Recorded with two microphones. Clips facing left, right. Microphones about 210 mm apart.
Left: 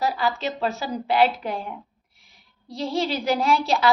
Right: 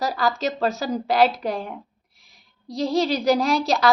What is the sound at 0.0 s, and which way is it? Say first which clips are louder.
A woman's voice: right 1 dB; 40° right (ahead or behind).